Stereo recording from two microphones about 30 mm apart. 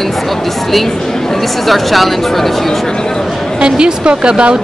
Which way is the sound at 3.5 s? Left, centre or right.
Right.